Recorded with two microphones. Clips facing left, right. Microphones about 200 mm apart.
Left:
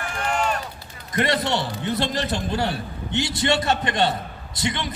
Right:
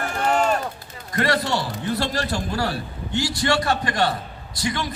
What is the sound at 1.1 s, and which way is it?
A man's voice, 20° left (ahead or behind).